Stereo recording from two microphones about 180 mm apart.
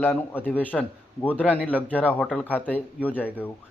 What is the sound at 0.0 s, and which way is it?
A man's voice, 10° left (ahead or behind).